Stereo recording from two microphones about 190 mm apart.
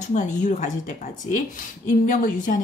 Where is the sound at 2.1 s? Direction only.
45° left (ahead or behind).